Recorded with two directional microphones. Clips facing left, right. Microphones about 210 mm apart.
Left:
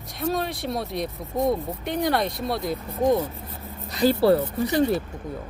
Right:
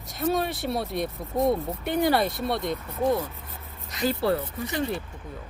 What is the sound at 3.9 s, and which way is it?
Speech, 35° left (ahead or behind).